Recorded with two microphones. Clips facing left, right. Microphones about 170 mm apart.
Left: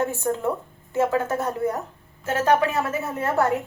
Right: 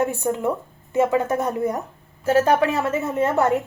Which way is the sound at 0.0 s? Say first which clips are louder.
Right 2 dB; 15° right (ahead or behind).